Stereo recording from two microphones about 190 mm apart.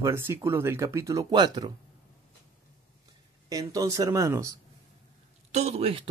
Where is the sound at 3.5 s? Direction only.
20° right (ahead or behind).